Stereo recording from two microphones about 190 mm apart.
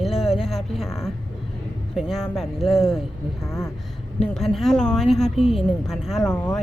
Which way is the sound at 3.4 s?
15° left (ahead or behind).